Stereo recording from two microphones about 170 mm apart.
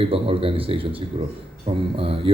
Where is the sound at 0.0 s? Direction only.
35° right (ahead or behind).